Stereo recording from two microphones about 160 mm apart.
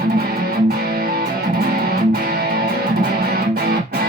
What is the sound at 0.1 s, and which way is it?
Music, 75° right (ahead or behind).